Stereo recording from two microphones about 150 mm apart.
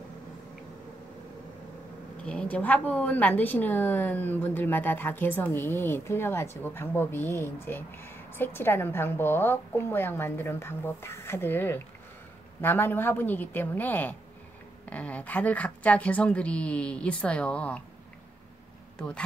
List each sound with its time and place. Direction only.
2.2 s speech: 10° left (ahead or behind)
18.9 s speech: 5° left (ahead or behind)